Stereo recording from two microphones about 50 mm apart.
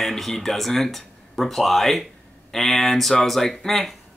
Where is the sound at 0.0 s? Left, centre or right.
Centre.